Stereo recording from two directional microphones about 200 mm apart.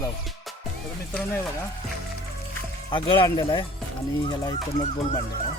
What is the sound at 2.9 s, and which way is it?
Speech, 25° left (ahead or behind).